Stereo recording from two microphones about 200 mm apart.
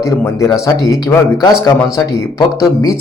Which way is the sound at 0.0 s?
15° left (ahead or behind).